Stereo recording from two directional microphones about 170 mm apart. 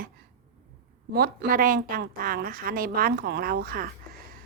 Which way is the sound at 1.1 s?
60° right (ahead or behind).